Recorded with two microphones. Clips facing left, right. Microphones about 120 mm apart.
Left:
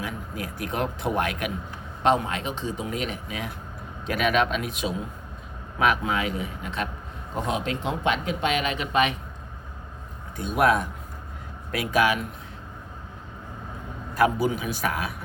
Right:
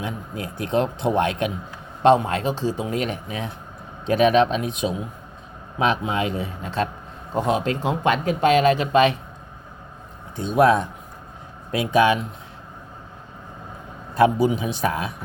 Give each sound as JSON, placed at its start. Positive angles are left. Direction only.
{"t": 0.0, "sound": "speech", "side_deg": -25}
{"t": 10.3, "sound": "speech", "side_deg": -25}
{"t": 14.1, "sound": "speech", "side_deg": -25}